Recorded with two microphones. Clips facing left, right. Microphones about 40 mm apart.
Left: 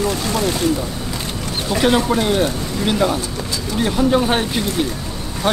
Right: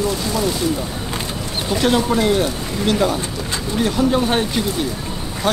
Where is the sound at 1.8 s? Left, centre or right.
Centre.